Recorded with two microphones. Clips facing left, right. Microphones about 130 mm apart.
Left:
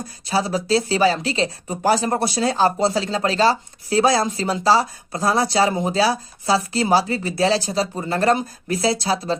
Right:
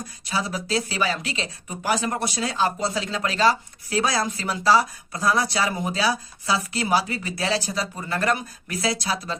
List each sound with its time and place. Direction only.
0.3 s speech: 30° left (ahead or behind)